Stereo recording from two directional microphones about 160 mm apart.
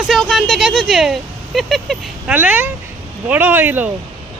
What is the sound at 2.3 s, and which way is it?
Speech, 10° right (ahead or behind).